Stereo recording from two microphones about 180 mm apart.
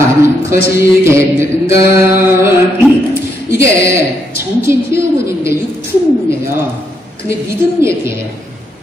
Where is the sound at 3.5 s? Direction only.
15° right (ahead or behind).